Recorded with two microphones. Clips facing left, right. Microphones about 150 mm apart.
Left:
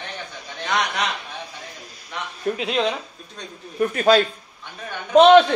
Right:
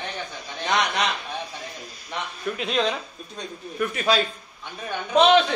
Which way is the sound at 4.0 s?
50° left (ahead or behind).